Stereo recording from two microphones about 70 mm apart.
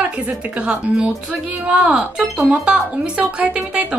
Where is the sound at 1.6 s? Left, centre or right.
Centre.